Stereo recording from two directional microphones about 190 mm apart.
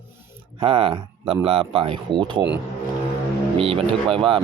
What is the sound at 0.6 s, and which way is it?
Speech, 30° right (ahead or behind).